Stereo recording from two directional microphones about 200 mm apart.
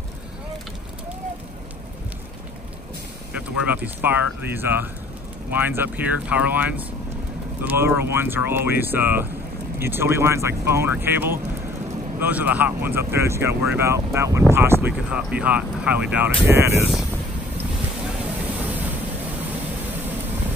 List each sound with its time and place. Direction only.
3.4 s speech: 10° right (ahead or behind)
18.6 s vehicle: 10° right (ahead or behind)